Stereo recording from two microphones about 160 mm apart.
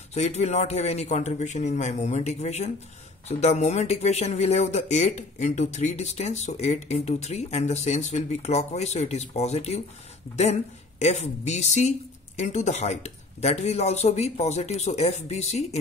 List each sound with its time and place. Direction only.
0.1 s speech: 45° left (ahead or behind)